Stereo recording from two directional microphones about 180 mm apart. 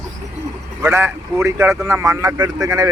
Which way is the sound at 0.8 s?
15° right (ahead or behind).